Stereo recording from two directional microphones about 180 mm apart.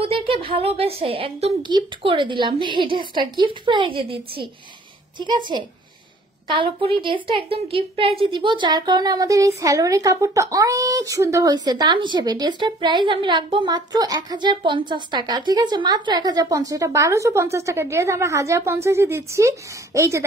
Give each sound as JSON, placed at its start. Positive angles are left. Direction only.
{"t": 0.0, "sound": "speech", "side_deg": -30}